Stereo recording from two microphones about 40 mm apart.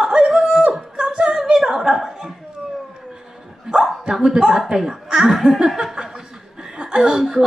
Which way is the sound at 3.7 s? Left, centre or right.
Centre.